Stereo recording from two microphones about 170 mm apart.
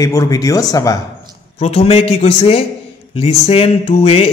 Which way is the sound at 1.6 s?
40° left (ahead or behind).